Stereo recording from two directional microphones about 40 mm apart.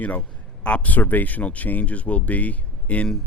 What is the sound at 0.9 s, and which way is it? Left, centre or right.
Speech, left.